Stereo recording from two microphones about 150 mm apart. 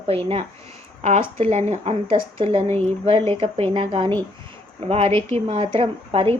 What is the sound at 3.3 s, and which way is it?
A woman's voice, 40° right (ahead or behind).